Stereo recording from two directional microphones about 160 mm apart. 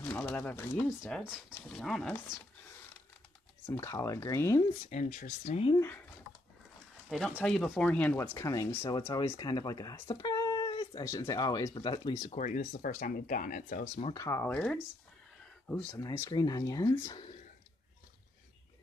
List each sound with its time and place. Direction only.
0.0 s speech: 10° left (ahead or behind)
1.0 s speech: centre (ahead or behind)
3.7 s speech: 20° left (ahead or behind)
4.8 s speech: 50° left (ahead or behind)
7.1 s speech: 5° left (ahead or behind)
8.4 s speech: 20° left (ahead or behind)
11.1 s speech: 20° left (ahead or behind)
12.3 s speech: 50° left (ahead or behind)
14.1 s speech: 15° left (ahead or behind)
16.0 s speech: 20° left (ahead or behind)